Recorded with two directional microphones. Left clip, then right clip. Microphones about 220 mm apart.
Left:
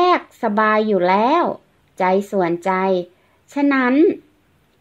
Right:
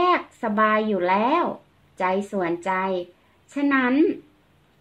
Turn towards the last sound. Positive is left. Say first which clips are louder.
# left 5 dB
turn(degrees=35)  # may be behind; listen again after turning